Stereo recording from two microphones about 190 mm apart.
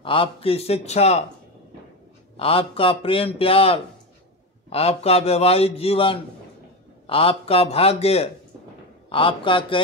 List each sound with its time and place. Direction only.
0.0 s a man's voice: 30° left (ahead or behind)
2.3 s a man's voice: 30° left (ahead or behind)